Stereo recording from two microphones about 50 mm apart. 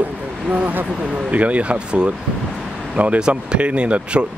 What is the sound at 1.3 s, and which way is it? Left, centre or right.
Speech, right.